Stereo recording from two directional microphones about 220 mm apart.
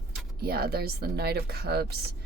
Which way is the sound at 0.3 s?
45° right (ahead or behind).